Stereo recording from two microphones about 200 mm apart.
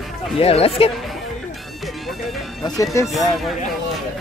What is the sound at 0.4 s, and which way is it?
Speech, 30° left (ahead or behind).